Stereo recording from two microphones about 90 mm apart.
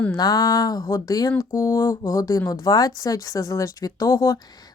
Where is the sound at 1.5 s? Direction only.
30° left (ahead or behind).